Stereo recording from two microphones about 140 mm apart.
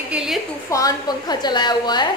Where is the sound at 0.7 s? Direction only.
25° left (ahead or behind).